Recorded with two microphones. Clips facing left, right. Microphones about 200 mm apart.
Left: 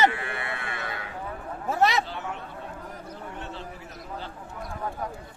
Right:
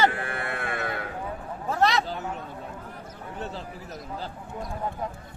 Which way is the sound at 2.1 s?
40° right (ahead or behind).